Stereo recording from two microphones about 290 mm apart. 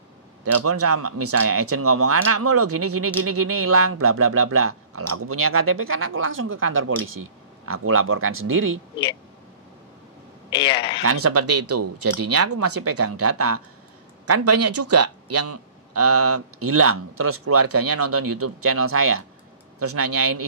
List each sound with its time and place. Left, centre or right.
0.4 s speech: right
10.5 s speech: centre
11.0 s speech: right